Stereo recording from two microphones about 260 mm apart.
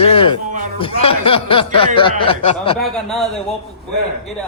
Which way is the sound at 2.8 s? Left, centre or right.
Centre.